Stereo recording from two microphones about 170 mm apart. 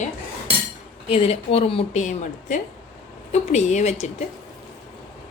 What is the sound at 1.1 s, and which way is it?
Speech, 35° left (ahead or behind).